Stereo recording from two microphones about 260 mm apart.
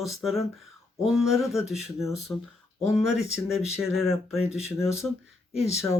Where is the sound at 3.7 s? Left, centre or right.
Centre.